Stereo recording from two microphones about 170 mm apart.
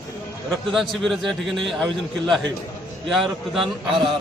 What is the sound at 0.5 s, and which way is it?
Speech, centre (ahead or behind).